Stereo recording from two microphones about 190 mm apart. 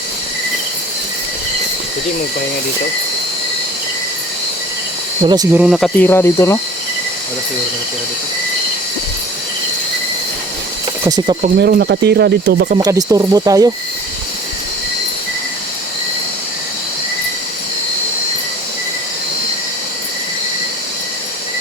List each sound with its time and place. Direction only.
5.2 s speech: 20° right (ahead or behind)
5.5 s speech: 5° right (ahead or behind)
6.0 s speech: 10° left (ahead or behind)
11.0 s speech: 20° right (ahead or behind)
11.6 s speech: 60° right (ahead or behind)
12.8 s speech: 20° right (ahead or behind)